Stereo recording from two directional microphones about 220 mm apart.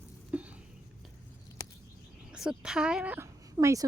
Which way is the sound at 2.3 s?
5° right (ahead or behind).